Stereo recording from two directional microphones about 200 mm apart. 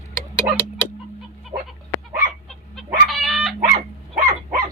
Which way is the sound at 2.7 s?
Centre (ahead or behind).